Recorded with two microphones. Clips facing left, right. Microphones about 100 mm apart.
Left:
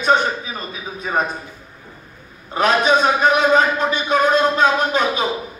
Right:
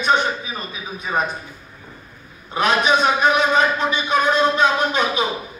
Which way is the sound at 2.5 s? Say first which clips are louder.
Left 2 dB; 40° left (ahead or behind).